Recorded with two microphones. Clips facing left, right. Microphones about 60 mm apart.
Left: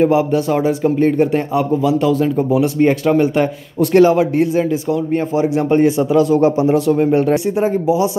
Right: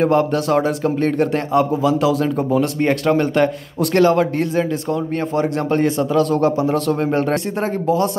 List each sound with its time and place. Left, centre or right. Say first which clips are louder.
0.0 s a man's voice: left 2 dB; centre